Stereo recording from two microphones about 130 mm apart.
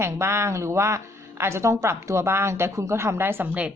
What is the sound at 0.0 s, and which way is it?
Speech, 20° right (ahead or behind).